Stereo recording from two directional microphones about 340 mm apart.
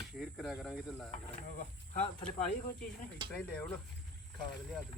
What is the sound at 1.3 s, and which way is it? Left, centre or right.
Speech, left.